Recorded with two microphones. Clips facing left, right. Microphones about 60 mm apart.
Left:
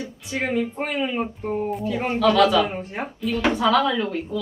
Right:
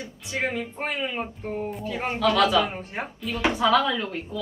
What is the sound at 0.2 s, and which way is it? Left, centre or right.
A woman's voice, centre.